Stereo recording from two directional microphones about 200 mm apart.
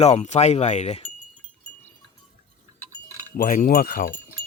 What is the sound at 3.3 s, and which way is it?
Speech, 45° left (ahead or behind).